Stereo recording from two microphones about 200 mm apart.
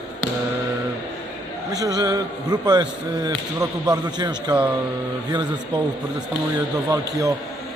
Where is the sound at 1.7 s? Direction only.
20° right (ahead or behind).